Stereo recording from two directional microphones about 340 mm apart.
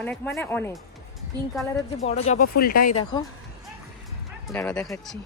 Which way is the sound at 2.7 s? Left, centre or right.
Left.